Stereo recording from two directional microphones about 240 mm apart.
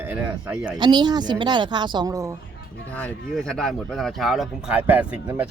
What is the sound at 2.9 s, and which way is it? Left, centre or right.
Speech, centre.